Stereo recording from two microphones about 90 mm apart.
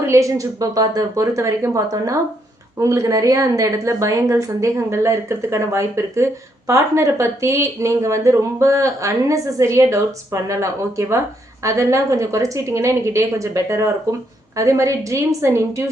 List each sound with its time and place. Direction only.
0.1 s speech: 35° right (ahead or behind)